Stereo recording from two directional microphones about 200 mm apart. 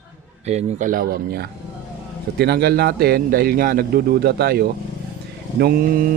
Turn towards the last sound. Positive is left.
turn(degrees=-45)  # may be behind; listen again after turning